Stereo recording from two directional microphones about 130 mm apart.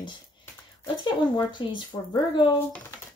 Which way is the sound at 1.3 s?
35° left (ahead or behind).